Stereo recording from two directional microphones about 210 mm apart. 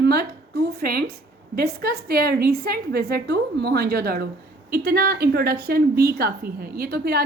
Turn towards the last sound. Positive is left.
turn(degrees=-45)  # may be behind; listen again after turning